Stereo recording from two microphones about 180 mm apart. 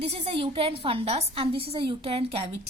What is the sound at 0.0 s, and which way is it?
Speech, 35° right (ahead or behind).